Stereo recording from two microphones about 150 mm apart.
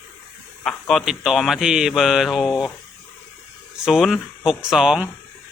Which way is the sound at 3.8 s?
Centre (ahead or behind).